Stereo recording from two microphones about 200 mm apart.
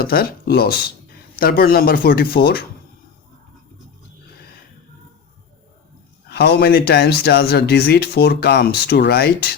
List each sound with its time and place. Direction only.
0.0 s speech: 50° left (ahead or behind)
6.3 s speech: 55° left (ahead or behind)